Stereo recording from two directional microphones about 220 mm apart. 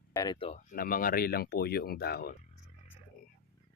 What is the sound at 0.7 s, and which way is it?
Speech, 40° left (ahead or behind).